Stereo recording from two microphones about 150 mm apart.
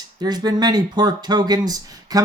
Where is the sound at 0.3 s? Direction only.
25° right (ahead or behind).